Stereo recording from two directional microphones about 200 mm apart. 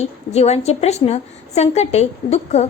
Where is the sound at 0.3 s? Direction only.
30° left (ahead or behind).